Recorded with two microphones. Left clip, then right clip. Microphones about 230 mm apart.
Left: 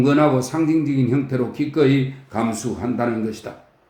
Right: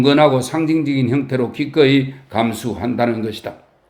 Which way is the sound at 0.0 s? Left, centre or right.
Right.